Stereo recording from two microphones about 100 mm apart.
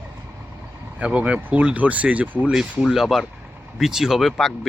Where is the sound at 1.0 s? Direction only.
10° right (ahead or behind).